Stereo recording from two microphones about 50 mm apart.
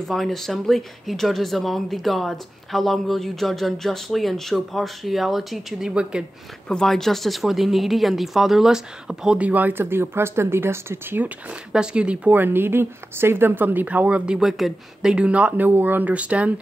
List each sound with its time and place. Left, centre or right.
0.1 s speech: centre
5.8 s speech: centre
6.7 s speech: centre
9.4 s speech: right
11.7 s speech: centre
12.3 s speech: right
15.5 s speech: right